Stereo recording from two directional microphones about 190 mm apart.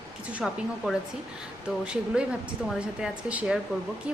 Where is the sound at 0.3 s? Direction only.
Centre (ahead or behind).